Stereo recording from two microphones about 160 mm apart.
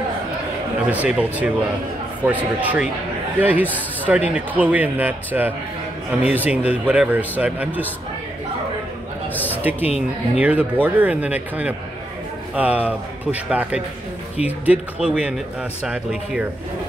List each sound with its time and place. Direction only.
0.8 s a man's voice: 10° right (ahead or behind)
9.5 s music: 10° right (ahead or behind)
9.8 s speech: 40° left (ahead or behind)
10.4 s a man's voice: 10° right (ahead or behind)